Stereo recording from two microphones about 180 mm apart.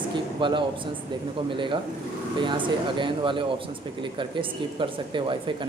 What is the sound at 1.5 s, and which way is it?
Speech, 30° right (ahead or behind).